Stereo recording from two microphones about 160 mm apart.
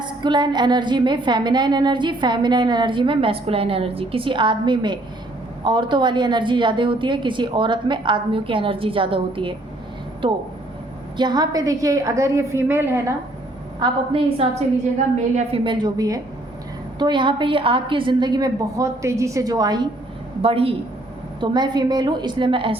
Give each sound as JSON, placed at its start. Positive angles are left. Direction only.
{"t": 0.0, "sound": "a woman's voice", "side_deg": -30}
{"t": 11.2, "sound": "a woman's voice", "side_deg": -25}
{"t": 13.7, "sound": "a woman's voice", "side_deg": -30}
{"t": 20.4, "sound": "a woman's voice", "side_deg": -35}